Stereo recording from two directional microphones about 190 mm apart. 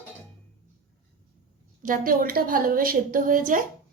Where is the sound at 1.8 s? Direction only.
45° right (ahead or behind).